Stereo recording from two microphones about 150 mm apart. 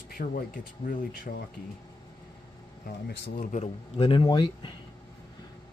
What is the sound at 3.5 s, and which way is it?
Speech, 40° left (ahead or behind).